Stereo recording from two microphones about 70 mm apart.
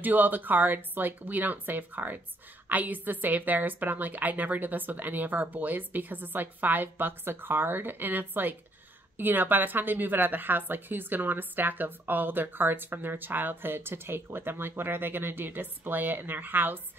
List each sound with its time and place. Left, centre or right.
0.0 s a woman's voice: right